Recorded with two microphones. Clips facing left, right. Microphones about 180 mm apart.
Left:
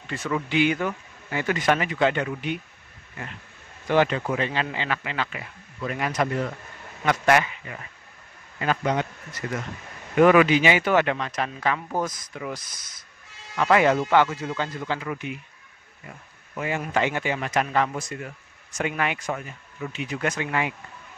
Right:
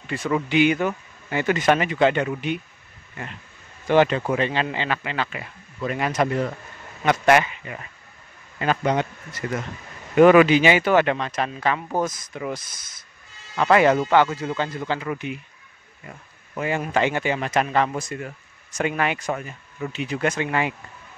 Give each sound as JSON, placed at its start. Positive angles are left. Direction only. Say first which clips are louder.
{"t": 0.5, "sound": "speech", "louder": "right 3 dB", "side_deg": -15}
{"t": 3.9, "sound": "speech", "louder": "right 3 dB", "side_deg": -25}
{"t": 8.5, "sound": "speech", "louder": "right 3 dB", "side_deg": -30}
{"t": 10.1, "sound": "speech", "louder": "right 3 dB", "side_deg": -30}
{"t": 13.6, "sound": "speech", "louder": "right 2 dB", "side_deg": -40}
{"t": 16.5, "sound": "speech", "louder": "right 3 dB", "side_deg": -35}